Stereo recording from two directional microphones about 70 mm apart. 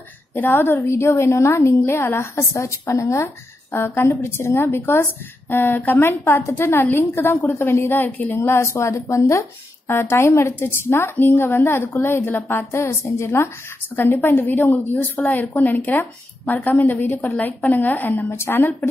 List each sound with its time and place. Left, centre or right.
0.3 s a woman's voice: left
3.7 s a woman's voice: left
8.4 s a woman's voice: left